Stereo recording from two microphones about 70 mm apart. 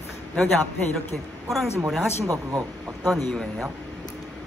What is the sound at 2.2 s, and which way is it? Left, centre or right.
Speech, right.